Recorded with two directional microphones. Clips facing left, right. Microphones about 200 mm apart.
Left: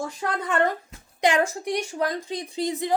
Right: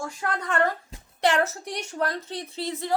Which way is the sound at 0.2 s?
20° left (ahead or behind).